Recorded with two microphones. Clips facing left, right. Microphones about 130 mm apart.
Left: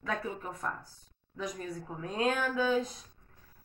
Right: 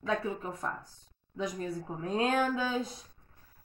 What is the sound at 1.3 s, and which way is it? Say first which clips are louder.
A woman's voice: right 3 dB; 25° right (ahead or behind).